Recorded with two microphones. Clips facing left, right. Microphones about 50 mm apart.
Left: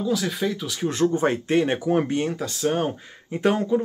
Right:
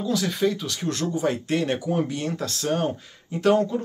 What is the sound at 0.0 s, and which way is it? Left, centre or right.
Speech, centre.